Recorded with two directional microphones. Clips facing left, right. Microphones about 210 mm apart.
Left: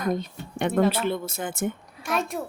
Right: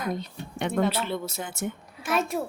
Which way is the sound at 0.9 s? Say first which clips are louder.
Left 3 dB; 50° left (ahead or behind).